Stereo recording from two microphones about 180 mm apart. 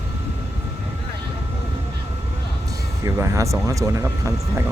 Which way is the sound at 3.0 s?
15° right (ahead or behind).